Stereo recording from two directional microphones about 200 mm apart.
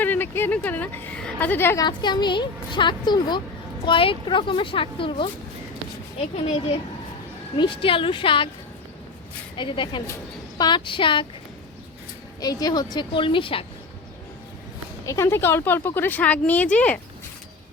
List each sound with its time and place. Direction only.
0.0 s a woman's voice: 10° left (ahead or behind)
6.3 s a child's voice: 30° left (ahead or behind)
9.6 s a child's voice: 25° left (ahead or behind)
12.4 s a child's voice: 20° left (ahead or behind)
15.0 s a woman's voice: 15° left (ahead or behind)